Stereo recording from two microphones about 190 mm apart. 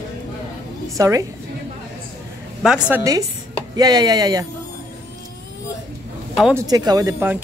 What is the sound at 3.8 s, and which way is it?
Speech, 20° right (ahead or behind).